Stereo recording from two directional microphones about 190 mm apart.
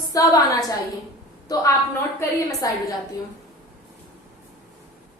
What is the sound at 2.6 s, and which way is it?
Speech, 20° left (ahead or behind).